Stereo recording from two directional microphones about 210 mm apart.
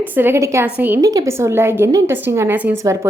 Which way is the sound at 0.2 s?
10° right (ahead or behind).